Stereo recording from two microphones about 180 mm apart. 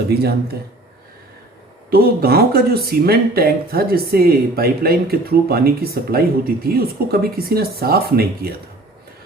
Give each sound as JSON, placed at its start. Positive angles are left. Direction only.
{"t": 0.1, "sound": "speech", "side_deg": -60}
{"t": 1.9, "sound": "speech", "side_deg": -55}